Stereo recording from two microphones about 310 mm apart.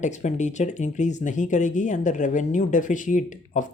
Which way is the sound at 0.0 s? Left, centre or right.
Left.